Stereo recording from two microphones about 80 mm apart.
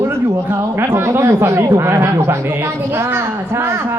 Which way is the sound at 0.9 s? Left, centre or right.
Right.